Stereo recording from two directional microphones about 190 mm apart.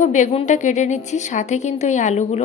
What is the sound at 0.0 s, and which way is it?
A woman's voice, 40° left (ahead or behind).